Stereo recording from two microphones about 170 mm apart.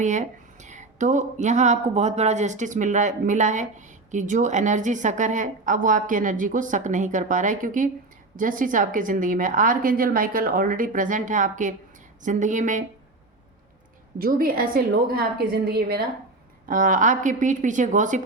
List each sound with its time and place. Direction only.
0.0 s speech: 45° right (ahead or behind)
14.2 s a woman's voice: 55° right (ahead or behind)
16.6 s speech: 50° right (ahead or behind)